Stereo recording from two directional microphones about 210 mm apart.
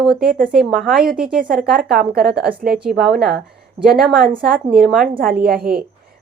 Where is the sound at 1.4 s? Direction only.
40° right (ahead or behind).